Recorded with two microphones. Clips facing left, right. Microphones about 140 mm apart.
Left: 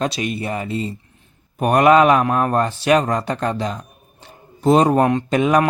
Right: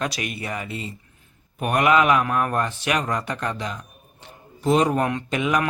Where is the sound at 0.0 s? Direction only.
25° left (ahead or behind).